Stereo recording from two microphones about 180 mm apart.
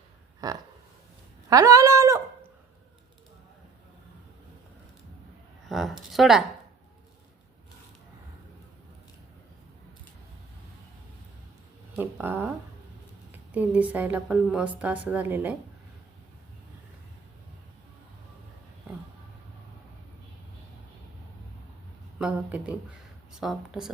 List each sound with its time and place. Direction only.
0.4 s speech: 20° right (ahead or behind)
5.6 s a sound: centre (ahead or behind)
6.1 s speech: centre (ahead or behind)
11.9 s speech: 10° right (ahead or behind)
22.2 s speech: 5° right (ahead or behind)